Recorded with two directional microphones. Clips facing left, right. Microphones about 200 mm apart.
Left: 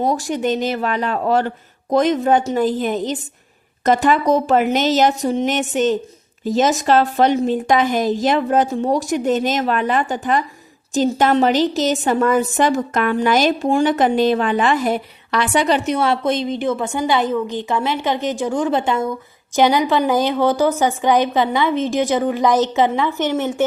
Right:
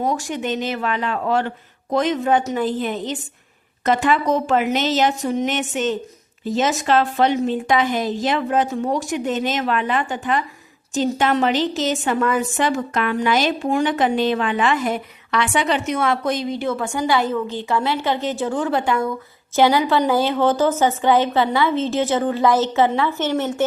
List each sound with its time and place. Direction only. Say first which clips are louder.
0.0 s a woman's voice: left 4 dB; 35° left (ahead or behind); by 23.6 s 15° left (ahead or behind)